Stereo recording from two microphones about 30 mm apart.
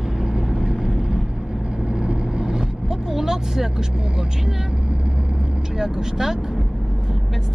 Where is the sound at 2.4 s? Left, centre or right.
Centre.